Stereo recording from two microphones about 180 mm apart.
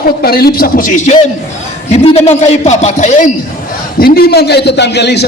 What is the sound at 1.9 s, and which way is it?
A man's voice, 35° left (ahead or behind).